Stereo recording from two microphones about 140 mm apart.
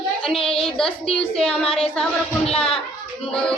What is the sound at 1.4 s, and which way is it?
Speech, 5° left (ahead or behind).